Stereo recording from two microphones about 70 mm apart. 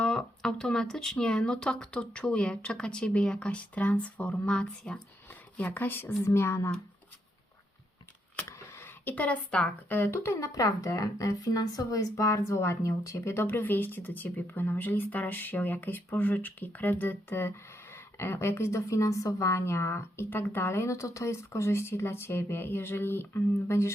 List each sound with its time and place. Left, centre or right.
0.0 s speech: centre
5.3 s speech: left
8.4 s a sound: left
9.0 s a woman's voice: left
9.9 s speech: left